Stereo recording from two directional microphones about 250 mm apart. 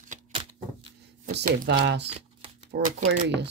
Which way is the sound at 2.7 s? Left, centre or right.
Right.